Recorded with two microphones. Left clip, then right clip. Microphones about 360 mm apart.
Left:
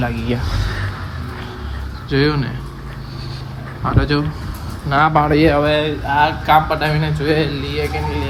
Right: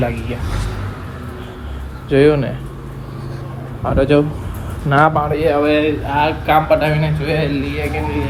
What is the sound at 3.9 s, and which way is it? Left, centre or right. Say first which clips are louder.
Speech: right 7 dB; centre.